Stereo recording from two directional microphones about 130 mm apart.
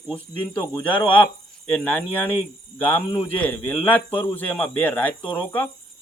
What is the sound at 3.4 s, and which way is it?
Speech, 15° left (ahead or behind).